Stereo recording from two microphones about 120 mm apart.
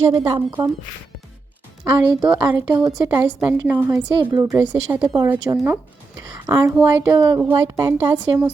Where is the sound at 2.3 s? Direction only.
25° right (ahead or behind).